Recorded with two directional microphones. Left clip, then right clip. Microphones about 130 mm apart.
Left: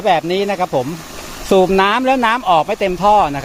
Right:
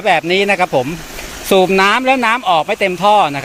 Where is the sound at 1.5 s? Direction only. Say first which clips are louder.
Right 1 dB; 10° left (ahead or behind).